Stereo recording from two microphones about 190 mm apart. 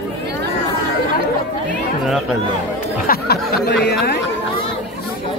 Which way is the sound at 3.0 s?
55° left (ahead or behind).